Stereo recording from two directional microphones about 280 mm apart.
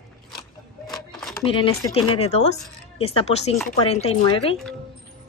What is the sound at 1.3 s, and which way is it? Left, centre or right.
Speech, centre.